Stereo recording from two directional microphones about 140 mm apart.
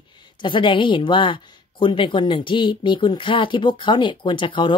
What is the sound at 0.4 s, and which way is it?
Speech, 35° left (ahead or behind).